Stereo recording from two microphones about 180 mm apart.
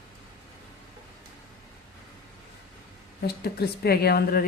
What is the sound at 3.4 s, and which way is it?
A woman's voice, 60° left (ahead or behind).